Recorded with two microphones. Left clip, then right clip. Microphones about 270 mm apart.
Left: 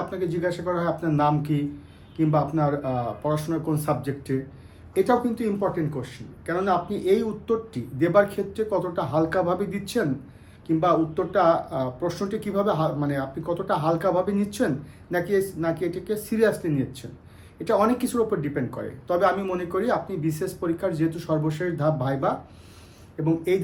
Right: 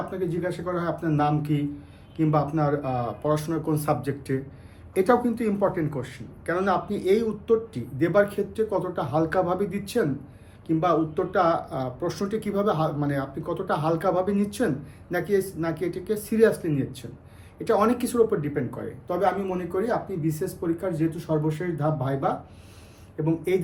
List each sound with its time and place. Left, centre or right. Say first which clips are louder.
0.1 s speech: left 2 dB; centre
20.2 s speech: left 1 dB; centre